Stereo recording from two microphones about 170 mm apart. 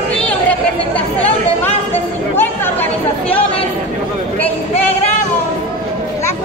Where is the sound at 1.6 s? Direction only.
10° left (ahead or behind).